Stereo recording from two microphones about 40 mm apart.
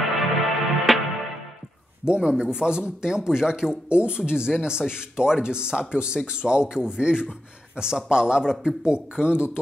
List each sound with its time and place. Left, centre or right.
0.2 s music: centre
2.0 s speech: right